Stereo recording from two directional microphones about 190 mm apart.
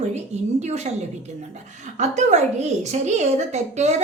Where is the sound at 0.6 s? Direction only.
35° right (ahead or behind).